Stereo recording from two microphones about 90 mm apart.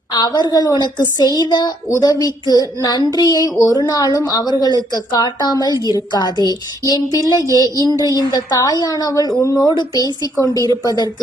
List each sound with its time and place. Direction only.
0.1 s speech: 50° left (ahead or behind)